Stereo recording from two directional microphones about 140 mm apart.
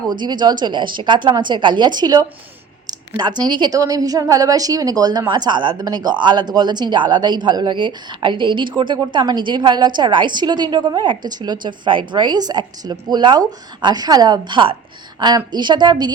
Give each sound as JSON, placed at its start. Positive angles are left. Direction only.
{"t": 0.1, "sound": "speech", "side_deg": -30}
{"t": 2.8, "sound": "a sound", "side_deg": -30}
{"t": 3.5, "sound": "a woman's voice", "side_deg": -30}